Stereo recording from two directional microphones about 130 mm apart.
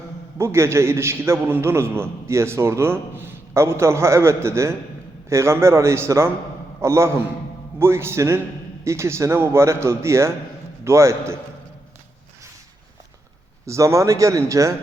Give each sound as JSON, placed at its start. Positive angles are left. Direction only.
{"t": 0.3, "sound": "a man's voice", "side_deg": -20}
{"t": 13.7, "sound": "a man's voice", "side_deg": -25}